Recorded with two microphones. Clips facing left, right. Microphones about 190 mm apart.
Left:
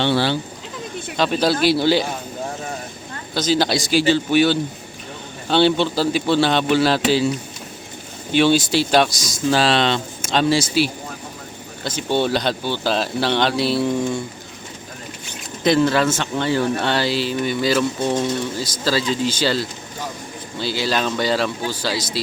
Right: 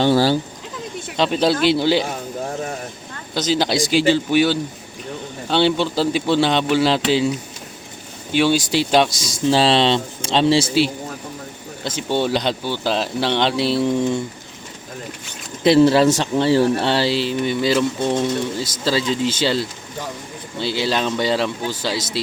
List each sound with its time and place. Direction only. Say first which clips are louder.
0.0 s speech: right 3 dB; 40° right (ahead or behind)
1.1 s speech: right 1 dB; 20° right (ahead or behind)
3.3 s speech: even; 20° right (ahead or behind)
5.8 s a man's voice: even; 15° right (ahead or behind)
8.3 s a man's voice: left 1 dB; 15° right (ahead or behind)
15.6 s speech: right 4 dB; 30° right (ahead or behind)